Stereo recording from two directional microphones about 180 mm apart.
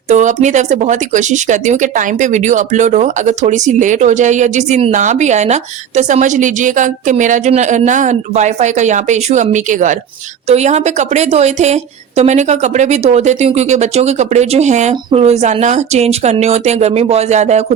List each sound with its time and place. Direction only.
0.1 s a woman's voice: 40° right (ahead or behind)